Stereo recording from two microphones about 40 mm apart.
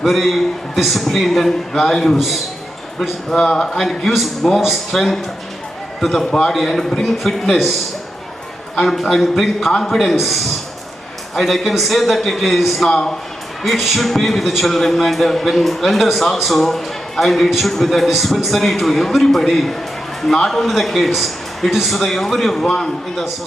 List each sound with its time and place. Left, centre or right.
0.0 s a man's voice: centre
2.1 s a man's voice: centre
3.2 s a man's voice: centre
4.0 s a man's voice: centre
6.5 s a man's voice: centre
8.8 s a man's voice: centre
12.9 s speech: centre
13.6 s a man's voice: centre
22.6 s a man's voice: centre